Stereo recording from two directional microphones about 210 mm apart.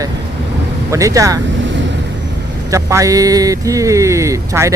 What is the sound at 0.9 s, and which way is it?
Speech, 15° right (ahead or behind).